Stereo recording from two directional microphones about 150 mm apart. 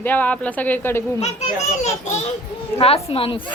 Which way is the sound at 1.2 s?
50° left (ahead or behind).